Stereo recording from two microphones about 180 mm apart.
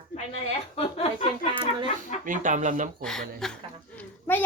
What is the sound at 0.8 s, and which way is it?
Speech, 35° left (ahead or behind).